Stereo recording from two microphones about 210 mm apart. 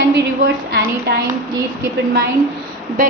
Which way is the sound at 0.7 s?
50° right (ahead or behind).